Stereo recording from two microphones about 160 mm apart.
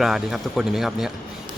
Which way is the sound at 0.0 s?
Centre (ahead or behind).